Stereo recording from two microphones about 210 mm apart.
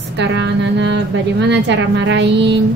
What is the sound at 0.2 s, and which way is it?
A woman's voice, 55° right (ahead or behind).